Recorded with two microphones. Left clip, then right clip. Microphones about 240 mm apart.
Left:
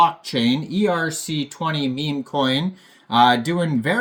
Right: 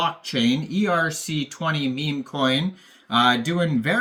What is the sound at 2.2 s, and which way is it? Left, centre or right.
Speech, centre.